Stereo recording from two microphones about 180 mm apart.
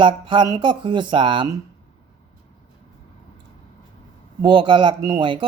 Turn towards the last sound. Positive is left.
turn(degrees=-25)  # may be behind; listen again after turning